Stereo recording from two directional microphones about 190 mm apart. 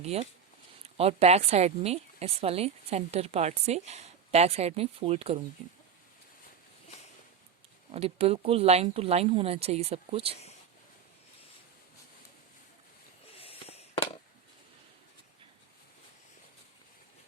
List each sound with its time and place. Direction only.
0.0 s a woman's voice: 35° right (ahead or behind)
7.9 s a woman's voice: 30° right (ahead or behind)
13.3 s fireworks: 30° left (ahead or behind)